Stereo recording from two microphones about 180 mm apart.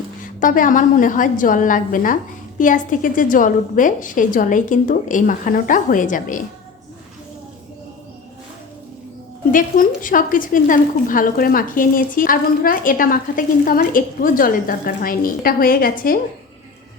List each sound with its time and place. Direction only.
0.3 s a woman's voice: 45° left (ahead or behind)
9.5 s a woman's voice: 50° left (ahead or behind)